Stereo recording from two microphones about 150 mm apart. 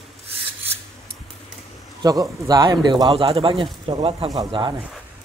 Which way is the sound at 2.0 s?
25° right (ahead or behind).